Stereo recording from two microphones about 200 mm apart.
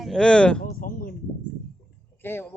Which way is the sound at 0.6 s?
45° left (ahead or behind).